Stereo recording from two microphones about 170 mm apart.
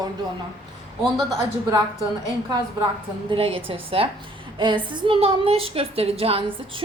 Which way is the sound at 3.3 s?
30° right (ahead or behind).